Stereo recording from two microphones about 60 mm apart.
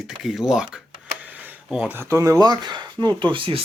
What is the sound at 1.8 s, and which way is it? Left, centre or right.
Speech, right.